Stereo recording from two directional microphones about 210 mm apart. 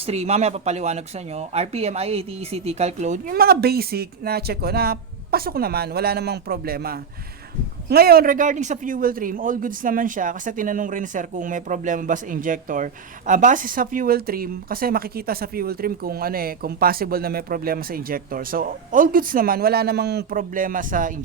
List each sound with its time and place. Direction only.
0.0 s a man's voice: 30° right (ahead or behind)